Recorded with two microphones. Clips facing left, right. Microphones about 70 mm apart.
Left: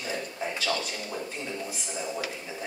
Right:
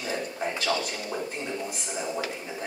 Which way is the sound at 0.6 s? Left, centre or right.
Centre.